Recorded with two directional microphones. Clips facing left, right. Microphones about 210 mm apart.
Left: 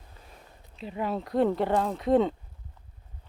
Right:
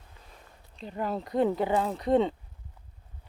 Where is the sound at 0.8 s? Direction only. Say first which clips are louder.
Left 1 dB; centre (ahead or behind).